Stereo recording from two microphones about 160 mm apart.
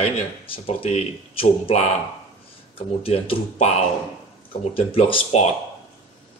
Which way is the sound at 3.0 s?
35° left (ahead or behind).